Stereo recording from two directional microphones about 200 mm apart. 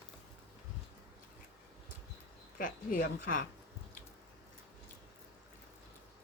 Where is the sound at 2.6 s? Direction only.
45° left (ahead or behind).